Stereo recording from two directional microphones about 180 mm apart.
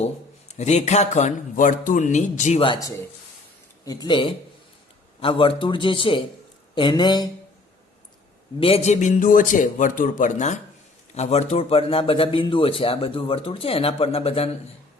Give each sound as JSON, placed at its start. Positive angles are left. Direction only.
{"t": 0.0, "sound": "a man's voice", "side_deg": 40}
{"t": 3.8, "sound": "a man's voice", "side_deg": 25}
{"t": 8.6, "sound": "a man's voice", "side_deg": 35}